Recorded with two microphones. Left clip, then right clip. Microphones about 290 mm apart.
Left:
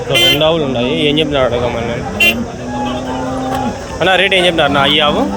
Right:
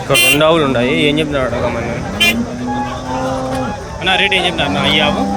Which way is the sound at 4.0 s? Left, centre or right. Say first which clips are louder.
Left 3 dB; centre.